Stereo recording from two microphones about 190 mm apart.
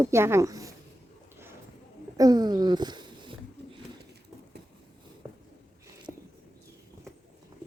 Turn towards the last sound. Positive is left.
turn(degrees=-5)  # may be behind; listen again after turning